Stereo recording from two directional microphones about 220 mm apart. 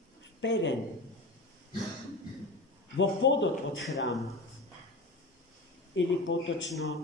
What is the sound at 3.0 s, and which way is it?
Speech, 55° left (ahead or behind).